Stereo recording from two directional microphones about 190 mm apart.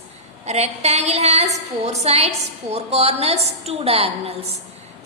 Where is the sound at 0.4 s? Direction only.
35° right (ahead or behind).